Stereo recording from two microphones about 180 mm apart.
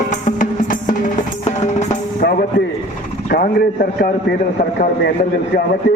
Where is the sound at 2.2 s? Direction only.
60° left (ahead or behind).